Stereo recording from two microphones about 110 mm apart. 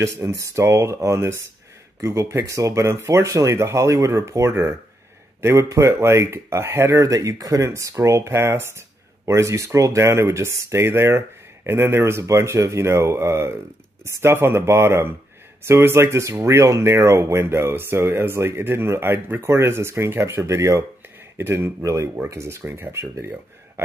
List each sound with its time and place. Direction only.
0.0 s speech: 25° right (ahead or behind)